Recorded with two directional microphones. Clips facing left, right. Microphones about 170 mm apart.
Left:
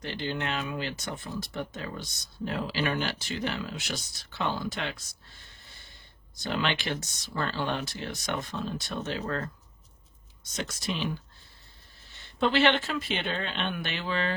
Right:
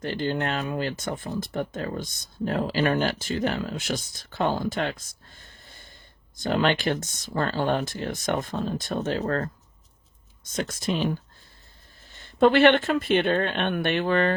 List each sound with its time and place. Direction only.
0.0 s speech: 45° right (ahead or behind)